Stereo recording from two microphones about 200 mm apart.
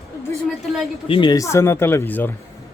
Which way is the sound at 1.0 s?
25° left (ahead or behind).